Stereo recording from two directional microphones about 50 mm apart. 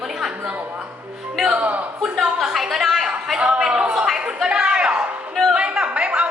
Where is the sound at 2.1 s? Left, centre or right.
Centre; by 6.3 s right.